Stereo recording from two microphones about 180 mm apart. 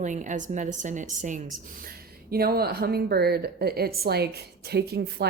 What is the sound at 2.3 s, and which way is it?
A woman's voice, 55° right (ahead or behind).